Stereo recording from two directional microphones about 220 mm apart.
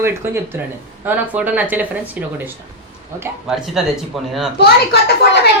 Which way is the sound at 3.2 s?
5° right (ahead or behind).